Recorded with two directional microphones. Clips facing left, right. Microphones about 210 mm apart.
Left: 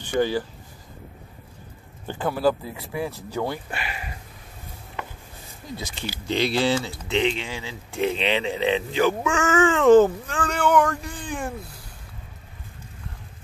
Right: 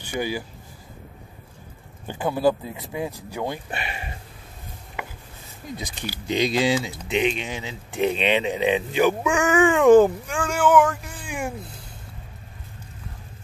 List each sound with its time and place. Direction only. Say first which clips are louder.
0.0 s speech: left 5 dB; 10° right (ahead or behind)
2.0 s speech: right 1 dB; 15° right (ahead or behind)
5.8 s speech: left 1 dB; 15° right (ahead or behind)